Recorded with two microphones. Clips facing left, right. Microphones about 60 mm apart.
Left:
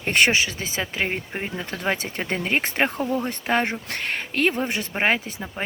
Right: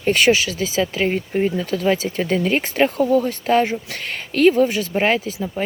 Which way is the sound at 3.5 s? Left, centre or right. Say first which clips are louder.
Right 5 dB; left.